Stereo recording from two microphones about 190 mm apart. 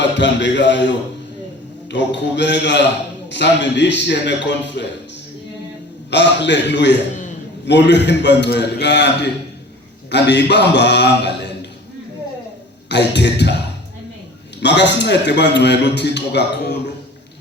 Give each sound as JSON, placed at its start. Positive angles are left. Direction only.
{"t": 0.0, "sound": "a man's voice", "side_deg": 70}
{"t": 6.1, "sound": "a man's voice", "side_deg": 65}
{"t": 12.9, "sound": "a man's voice", "side_deg": 65}
{"t": 14.6, "sound": "a man's voice", "side_deg": 65}